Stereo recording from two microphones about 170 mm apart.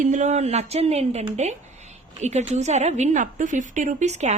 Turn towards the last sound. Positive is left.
turn(degrees=-40)  # may be behind; listen again after turning